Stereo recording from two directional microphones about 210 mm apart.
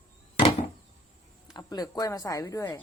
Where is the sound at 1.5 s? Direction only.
20° left (ahead or behind).